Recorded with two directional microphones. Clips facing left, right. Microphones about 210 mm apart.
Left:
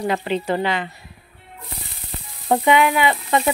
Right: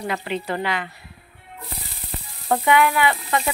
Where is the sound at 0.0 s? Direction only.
30° left (ahead or behind).